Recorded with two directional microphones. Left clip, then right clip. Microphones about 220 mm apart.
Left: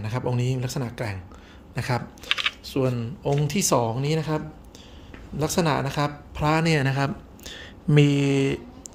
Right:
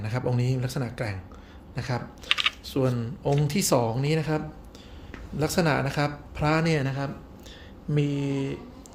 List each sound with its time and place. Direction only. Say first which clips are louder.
0.0 s speech: left 1 dB; 10° left (ahead or behind)
2.6 s a woman's voice: left 1 dB; 10° left (ahead or behind); by 8.5 s 25° left (ahead or behind)